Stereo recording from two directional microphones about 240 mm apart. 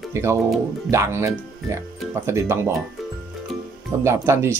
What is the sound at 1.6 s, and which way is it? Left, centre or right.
Speech, centre.